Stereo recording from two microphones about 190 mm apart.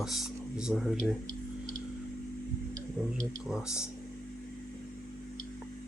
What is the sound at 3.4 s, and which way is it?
Speech, 5° right (ahead or behind).